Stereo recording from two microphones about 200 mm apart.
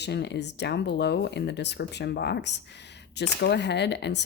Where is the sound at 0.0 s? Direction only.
60° left (ahead or behind).